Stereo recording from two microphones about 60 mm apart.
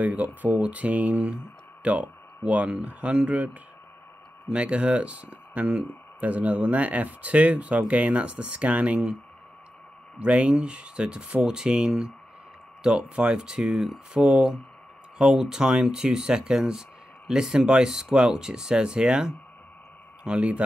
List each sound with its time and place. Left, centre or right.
0.0 s speech: right
4.5 s speech: centre
10.1 s speech: right